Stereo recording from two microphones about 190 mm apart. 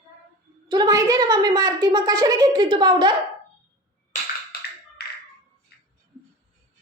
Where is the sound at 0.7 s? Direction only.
20° right (ahead or behind).